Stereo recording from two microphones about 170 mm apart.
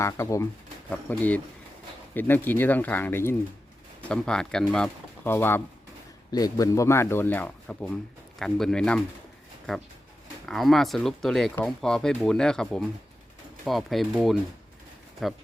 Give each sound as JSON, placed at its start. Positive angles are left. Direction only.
{"t": 0.0, "sound": "speech", "side_deg": 15}
{"t": 10.4, "sound": "speech", "side_deg": 0}